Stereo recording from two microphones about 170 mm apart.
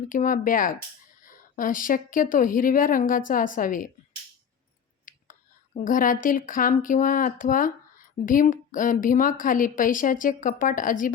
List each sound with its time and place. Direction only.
0.1 s a woman's voice: 50° left (ahead or behind)
5.0 s speech: 50° left (ahead or behind)